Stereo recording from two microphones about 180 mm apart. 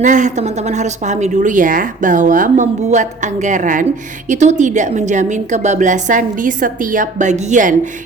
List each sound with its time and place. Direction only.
0.0 s a woman's voice: 45° right (ahead or behind)